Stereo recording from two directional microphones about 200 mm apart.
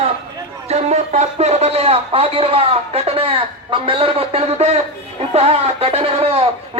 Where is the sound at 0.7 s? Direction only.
35° right (ahead or behind).